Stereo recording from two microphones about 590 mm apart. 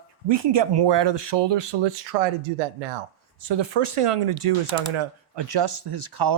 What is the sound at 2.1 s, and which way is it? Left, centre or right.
Speech, right.